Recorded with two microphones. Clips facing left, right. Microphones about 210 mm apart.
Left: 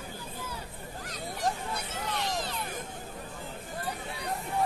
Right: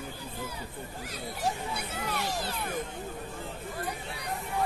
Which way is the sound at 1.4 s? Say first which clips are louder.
Even; 10° right (ahead or behind).